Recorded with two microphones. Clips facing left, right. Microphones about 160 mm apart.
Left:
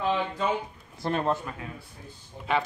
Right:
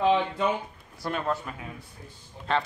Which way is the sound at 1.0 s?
25° left (ahead or behind).